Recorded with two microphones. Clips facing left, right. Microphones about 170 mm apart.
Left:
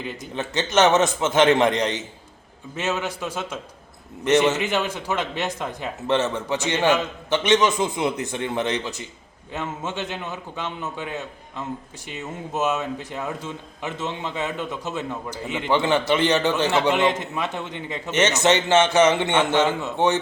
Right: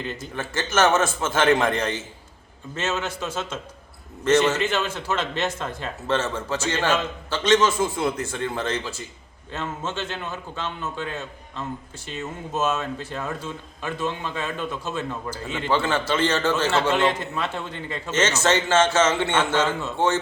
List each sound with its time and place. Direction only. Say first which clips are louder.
0.0 s a man's voice: left 1 dB; 20° left (ahead or behind)